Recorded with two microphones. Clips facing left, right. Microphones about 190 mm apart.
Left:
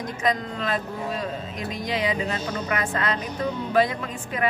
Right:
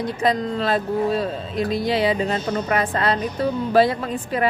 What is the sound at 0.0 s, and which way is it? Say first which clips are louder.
Speech: right 5 dB; 30° right (ahead or behind).